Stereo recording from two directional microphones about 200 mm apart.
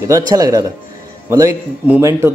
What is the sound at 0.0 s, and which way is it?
A man's voice, 15° right (ahead or behind).